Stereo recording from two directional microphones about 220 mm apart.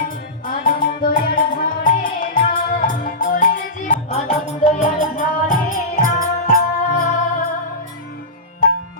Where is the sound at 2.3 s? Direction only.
40° left (ahead or behind).